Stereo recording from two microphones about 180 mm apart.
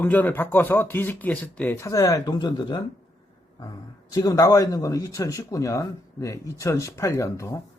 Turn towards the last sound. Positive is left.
turn(degrees=15)  # may be behind; listen again after turning